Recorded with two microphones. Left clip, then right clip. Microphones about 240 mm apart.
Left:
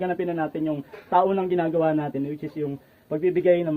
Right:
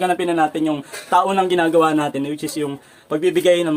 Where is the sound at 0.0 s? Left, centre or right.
Centre.